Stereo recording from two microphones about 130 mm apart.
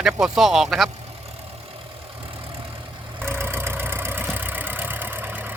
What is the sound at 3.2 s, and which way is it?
Vehicle, 20° right (ahead or behind).